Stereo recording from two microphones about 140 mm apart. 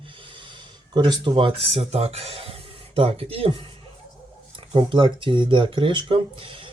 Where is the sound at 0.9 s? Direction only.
30° right (ahead or behind).